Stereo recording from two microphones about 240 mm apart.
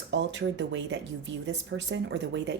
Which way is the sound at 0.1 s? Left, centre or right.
Right.